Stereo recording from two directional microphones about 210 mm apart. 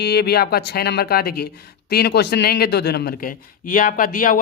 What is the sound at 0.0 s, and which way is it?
A man's voice, 50° left (ahead or behind).